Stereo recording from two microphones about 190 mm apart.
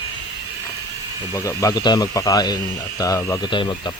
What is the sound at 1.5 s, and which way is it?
Speech, 15° left (ahead or behind).